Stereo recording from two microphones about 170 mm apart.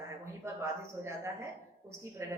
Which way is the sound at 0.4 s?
15° right (ahead or behind).